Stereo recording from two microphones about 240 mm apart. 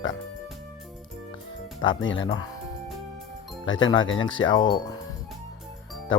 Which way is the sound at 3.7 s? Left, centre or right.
Left.